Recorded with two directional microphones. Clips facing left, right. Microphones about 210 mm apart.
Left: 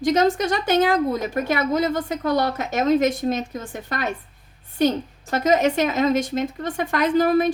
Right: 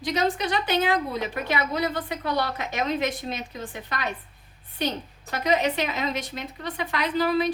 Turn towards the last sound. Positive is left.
turn(degrees=45)  # may be behind; listen again after turning